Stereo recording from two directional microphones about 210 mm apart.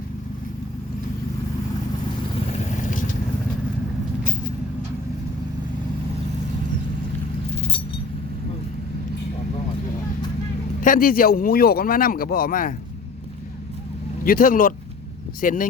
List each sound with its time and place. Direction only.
2.5 s vehicle: 35° left (ahead or behind)
4.2 s vehicle: 40° left (ahead or behind)
10.8 s speech: 40° left (ahead or behind)
14.3 s speech: 40° left (ahead or behind)